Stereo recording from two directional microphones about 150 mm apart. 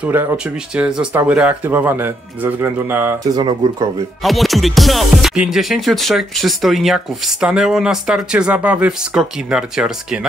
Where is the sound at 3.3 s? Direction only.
25° right (ahead or behind).